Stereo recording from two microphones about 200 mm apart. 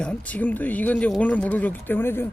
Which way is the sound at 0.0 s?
5° left (ahead or behind).